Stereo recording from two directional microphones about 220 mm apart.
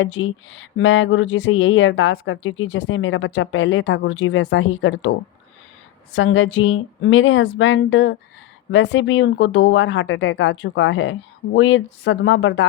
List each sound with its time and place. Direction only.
0.0 s speech: 60° left (ahead or behind)
6.1 s speech: 60° left (ahead or behind)